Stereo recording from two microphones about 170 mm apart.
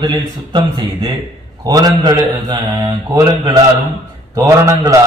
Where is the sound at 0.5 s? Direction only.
25° right (ahead or behind).